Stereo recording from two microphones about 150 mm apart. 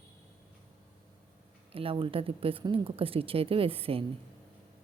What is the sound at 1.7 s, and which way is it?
Speech, 40° right (ahead or behind).